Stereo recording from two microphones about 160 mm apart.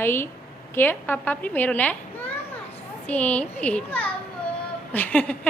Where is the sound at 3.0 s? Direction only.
10° left (ahead or behind).